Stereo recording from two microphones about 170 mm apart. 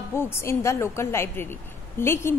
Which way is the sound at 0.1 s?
15° left (ahead or behind).